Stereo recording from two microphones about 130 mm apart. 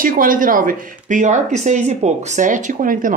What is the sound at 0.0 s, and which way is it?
Speech, 90° right.